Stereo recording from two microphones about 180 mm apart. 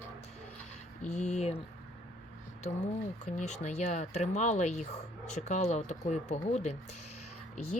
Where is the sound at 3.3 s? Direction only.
40° left (ahead or behind).